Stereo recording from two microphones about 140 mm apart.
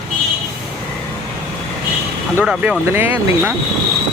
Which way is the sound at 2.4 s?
10° right (ahead or behind).